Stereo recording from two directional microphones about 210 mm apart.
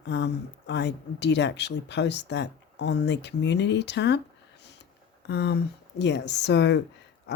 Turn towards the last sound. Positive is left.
turn(degrees=55)  # may be behind; listen again after turning